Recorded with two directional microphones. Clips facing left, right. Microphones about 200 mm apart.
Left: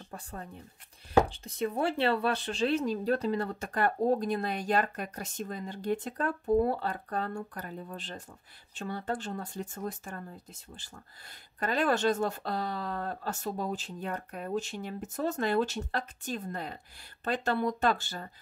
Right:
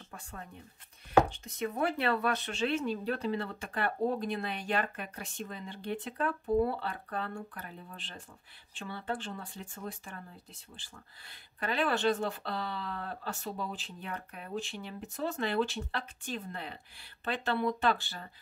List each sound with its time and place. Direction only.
0.1 s speech: 35° left (ahead or behind)